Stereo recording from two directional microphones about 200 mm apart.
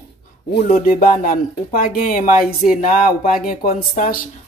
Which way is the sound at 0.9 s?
45° left (ahead or behind).